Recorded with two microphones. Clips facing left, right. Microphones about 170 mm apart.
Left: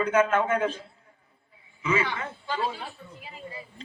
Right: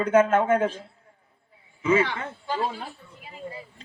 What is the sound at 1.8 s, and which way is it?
Speech, 45° right (ahead or behind).